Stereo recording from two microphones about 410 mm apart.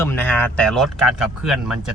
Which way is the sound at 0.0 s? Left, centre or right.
Centre.